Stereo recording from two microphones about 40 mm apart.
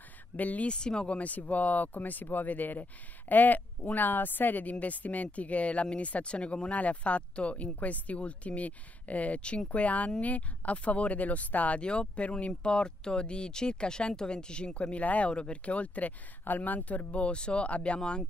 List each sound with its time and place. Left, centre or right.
0.4 s speech: left
0.7 s speech: left
1.1 s speech: left
11.8 s speech: left
17.1 s speech: left